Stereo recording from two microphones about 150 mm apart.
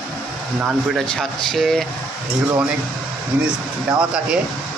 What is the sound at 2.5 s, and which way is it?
Speech, 10° right (ahead or behind).